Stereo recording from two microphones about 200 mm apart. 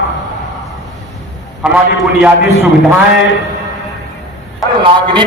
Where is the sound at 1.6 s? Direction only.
5° right (ahead or behind).